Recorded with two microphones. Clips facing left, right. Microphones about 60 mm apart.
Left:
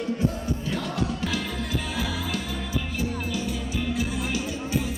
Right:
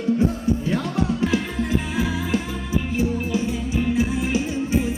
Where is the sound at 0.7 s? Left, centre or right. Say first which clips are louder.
Right 5 dB; right.